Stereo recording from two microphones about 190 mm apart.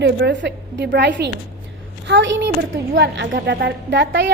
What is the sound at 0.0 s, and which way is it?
A woman's voice, 65° right (ahead or behind).